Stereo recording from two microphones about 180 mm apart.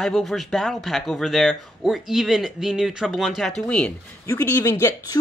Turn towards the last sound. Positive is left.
turn(degrees=20)  # may be behind; listen again after turning